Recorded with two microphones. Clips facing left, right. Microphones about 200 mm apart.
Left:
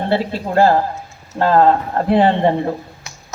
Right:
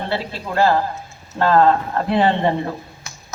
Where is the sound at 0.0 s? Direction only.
45° left (ahead or behind).